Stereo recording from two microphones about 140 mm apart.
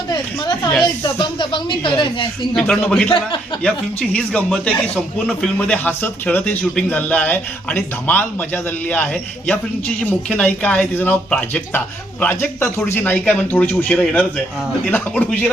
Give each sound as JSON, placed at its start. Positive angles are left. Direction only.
{"t": 0.1, "sound": "a woman's voice", "side_deg": 30}
{"t": 2.6, "sound": "a man's voice", "side_deg": 5}